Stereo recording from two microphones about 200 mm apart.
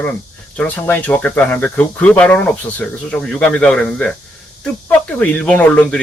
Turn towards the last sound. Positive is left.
turn(degrees=5)  # may be behind; listen again after turning